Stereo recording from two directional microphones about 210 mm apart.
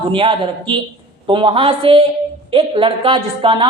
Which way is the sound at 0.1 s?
25° right (ahead or behind).